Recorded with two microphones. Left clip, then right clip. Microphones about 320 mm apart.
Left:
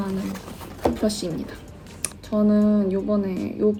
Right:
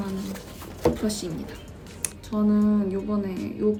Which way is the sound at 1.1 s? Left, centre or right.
Centre.